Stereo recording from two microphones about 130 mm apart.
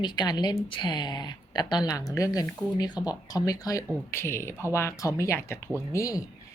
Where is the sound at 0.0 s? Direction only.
35° left (ahead or behind).